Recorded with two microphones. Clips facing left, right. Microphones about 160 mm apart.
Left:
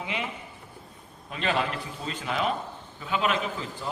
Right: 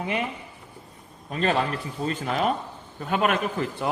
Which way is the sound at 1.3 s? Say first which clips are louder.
Right 4 dB; 40° right (ahead or behind).